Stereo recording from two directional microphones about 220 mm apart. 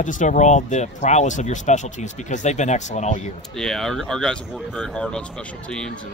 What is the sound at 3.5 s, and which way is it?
Speech, centre (ahead or behind).